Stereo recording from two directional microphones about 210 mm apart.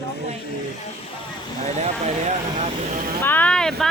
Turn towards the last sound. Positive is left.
turn(degrees=0)  # may be behind; listen again after turning